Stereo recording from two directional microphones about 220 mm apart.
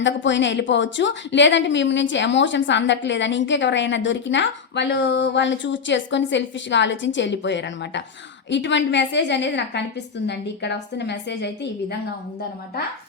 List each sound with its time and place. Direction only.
0.0 s a woman's voice: 55° left (ahead or behind)